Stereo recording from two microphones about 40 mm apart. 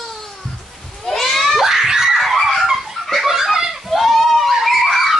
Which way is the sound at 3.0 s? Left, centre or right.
Centre.